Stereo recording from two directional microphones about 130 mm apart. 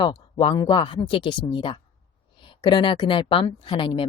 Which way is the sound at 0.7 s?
40° left (ahead or behind).